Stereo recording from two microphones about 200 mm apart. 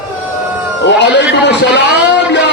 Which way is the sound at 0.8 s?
60° left (ahead or behind).